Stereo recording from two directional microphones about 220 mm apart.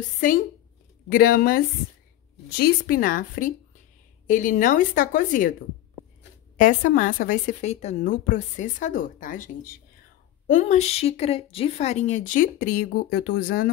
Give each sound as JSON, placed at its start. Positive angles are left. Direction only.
{"t": 1.0, "sound": "a woman's voice", "side_deg": 40}
{"t": 2.6, "sound": "a woman's voice", "side_deg": 40}
{"t": 6.5, "sound": "a woman's voice", "side_deg": 35}